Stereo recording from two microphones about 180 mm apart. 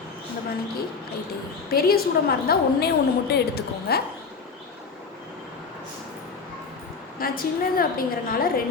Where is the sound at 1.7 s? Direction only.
55° left (ahead or behind).